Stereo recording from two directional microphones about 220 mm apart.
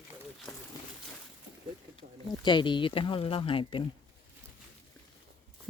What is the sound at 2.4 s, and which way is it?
Speech, 20° left (ahead or behind).